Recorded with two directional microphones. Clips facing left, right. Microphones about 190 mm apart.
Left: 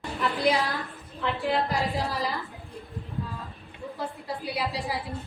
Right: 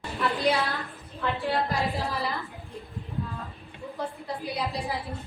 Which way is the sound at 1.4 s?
15° left (ahead or behind).